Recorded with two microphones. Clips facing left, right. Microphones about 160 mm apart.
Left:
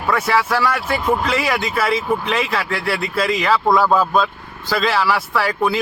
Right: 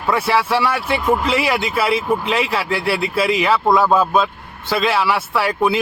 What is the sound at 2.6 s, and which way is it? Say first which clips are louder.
Speech: right 2 dB; 30° right (ahead or behind).